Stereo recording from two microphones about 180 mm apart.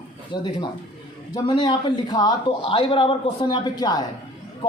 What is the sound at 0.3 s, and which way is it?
A man's voice, 25° left (ahead or behind).